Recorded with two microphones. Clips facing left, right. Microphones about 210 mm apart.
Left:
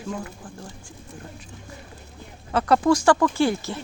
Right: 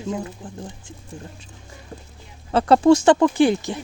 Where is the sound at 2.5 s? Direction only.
30° right (ahead or behind).